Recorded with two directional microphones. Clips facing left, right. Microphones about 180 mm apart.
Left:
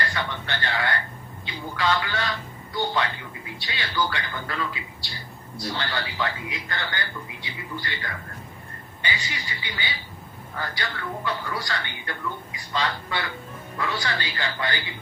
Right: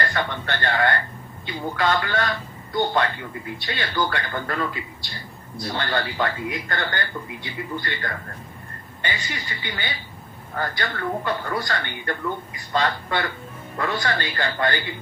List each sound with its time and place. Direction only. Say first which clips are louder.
0.0 s speech: right 4 dB; 50° right (ahead or behind)